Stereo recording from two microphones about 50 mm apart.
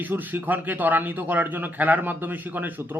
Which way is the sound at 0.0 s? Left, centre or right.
Right.